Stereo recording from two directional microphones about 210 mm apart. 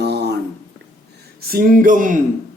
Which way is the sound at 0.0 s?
50° right (ahead or behind).